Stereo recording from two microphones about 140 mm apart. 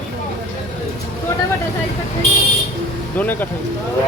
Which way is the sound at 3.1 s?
15° left (ahead or behind).